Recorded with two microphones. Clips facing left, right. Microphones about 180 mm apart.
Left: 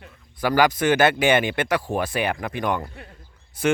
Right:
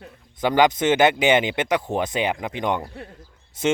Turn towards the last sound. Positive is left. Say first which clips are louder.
# even
turn(degrees=-20)  # may be behind; listen again after turning